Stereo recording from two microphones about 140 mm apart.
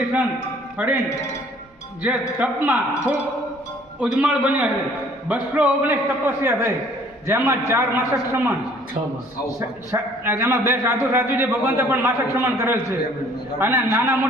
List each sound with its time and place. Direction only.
0.8 s a man's voice: 10° right (ahead or behind)
2.0 s a man's voice: 10° right (ahead or behind)
9.6 s a man's voice: 15° right (ahead or behind)